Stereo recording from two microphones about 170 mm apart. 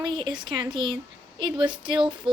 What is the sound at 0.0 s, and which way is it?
Speech, 25° right (ahead or behind).